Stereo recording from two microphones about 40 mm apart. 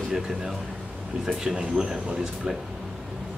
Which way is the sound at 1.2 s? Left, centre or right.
Centre.